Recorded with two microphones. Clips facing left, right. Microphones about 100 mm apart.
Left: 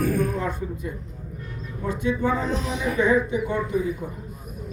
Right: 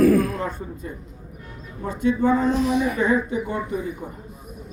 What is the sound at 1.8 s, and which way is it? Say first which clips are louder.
Speech: right 3 dB; 35° right (ahead or behind).